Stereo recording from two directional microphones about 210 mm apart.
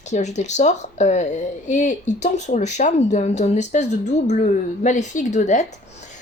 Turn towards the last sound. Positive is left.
turn(degrees=35)  # may be behind; listen again after turning